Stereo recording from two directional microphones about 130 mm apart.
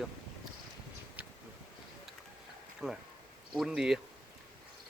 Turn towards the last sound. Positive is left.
turn(degrees=-5)  # may be behind; listen again after turning